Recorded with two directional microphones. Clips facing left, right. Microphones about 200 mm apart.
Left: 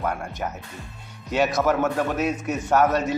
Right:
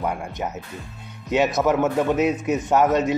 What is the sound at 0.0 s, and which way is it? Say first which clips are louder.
A man's voice: right 1 dB; 15° right (ahead or behind).